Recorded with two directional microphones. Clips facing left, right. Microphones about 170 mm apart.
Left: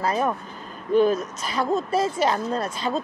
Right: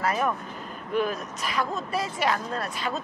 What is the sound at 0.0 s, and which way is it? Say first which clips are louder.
Speech: left 2 dB; 25° left (ahead or behind).